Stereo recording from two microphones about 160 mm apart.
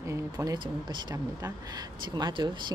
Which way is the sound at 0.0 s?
20° right (ahead or behind).